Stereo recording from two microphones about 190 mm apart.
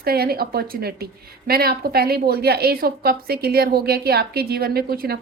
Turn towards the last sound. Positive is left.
turn(degrees=-50)  # may be behind; listen again after turning